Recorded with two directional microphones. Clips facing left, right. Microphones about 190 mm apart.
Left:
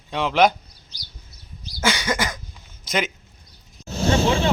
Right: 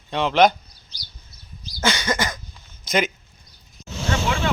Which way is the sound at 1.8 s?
10° left (ahead or behind).